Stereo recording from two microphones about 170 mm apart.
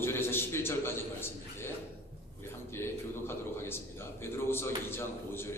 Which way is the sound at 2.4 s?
15° left (ahead or behind).